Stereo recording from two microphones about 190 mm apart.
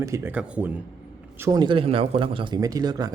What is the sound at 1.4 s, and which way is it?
A man's voice, 20° right (ahead or behind).